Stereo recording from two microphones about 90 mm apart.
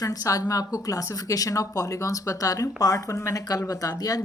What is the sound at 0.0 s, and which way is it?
A woman's voice, 40° left (ahead or behind).